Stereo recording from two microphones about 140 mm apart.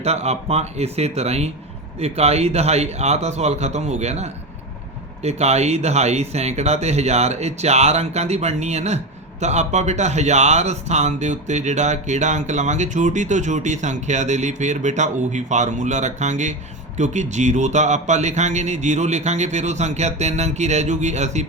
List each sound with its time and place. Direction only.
0.0 s speech: 50° right (ahead or behind)